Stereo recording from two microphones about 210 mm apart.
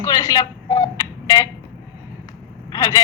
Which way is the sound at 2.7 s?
15° left (ahead or behind).